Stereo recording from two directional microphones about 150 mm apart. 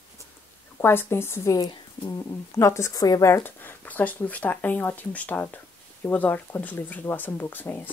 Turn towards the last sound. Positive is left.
turn(degrees=10)  # may be behind; listen again after turning